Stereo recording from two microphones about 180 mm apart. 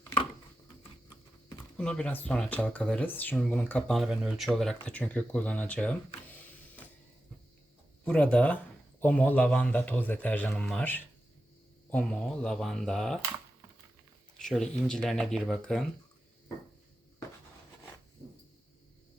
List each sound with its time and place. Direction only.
1.7 s speech: 5° left (ahead or behind)
8.0 s speech: 5° left (ahead or behind)
14.4 s speech: centre (ahead or behind)